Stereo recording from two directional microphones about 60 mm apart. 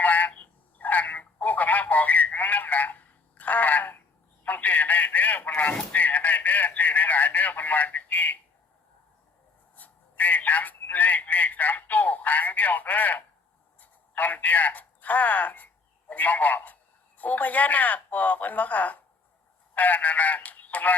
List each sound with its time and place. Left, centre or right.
0.0 s telephone: left
9.7 s telephone: left
17.2 s a sound: left